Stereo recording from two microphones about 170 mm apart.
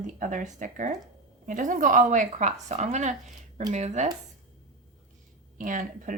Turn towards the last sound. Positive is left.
turn(degrees=-50)  # may be behind; listen again after turning